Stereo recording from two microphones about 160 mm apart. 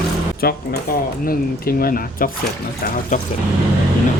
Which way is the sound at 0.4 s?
70° left (ahead or behind).